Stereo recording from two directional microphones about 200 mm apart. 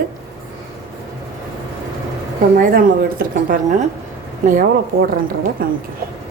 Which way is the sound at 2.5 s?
45° right (ahead or behind).